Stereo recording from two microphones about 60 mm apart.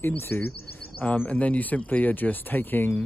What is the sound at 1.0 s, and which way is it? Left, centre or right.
Speech, left.